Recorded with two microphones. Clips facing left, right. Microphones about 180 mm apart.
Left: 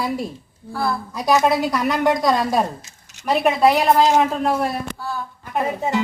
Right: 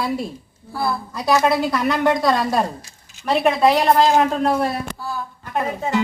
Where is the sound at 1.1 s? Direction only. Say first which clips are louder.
Even; 10° left (ahead or behind).